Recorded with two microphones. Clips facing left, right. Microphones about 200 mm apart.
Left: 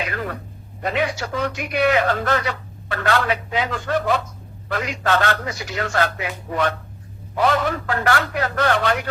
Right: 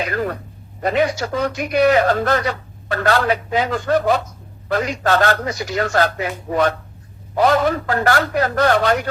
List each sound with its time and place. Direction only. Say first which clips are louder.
0.8 s speech: right 5 dB; 40° right (ahead or behind)